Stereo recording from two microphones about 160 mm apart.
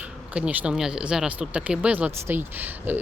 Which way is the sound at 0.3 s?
5° right (ahead or behind).